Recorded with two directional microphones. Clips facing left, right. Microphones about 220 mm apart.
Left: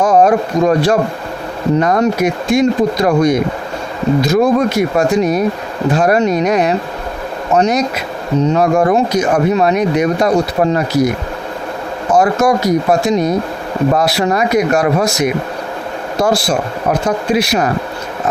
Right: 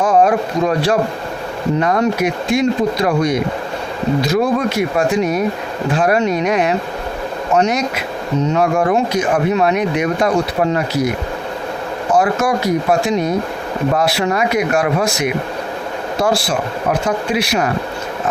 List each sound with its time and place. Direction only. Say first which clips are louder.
0.0 s a sound: left 3 dB; 40° left (ahead or behind)
0.6 s speech: left 5 dB; 45° left (ahead or behind)
1.8 s speech: left 2 dB; 40° left (ahead or behind)
12.1 s speech: left 4 dB; 40° left (ahead or behind)